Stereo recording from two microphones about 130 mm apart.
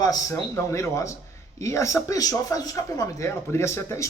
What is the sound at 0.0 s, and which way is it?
A man's voice, 30° left (ahead or behind).